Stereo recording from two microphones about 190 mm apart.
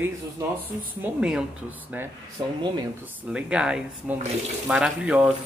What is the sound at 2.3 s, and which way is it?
Speech, 20° right (ahead or behind).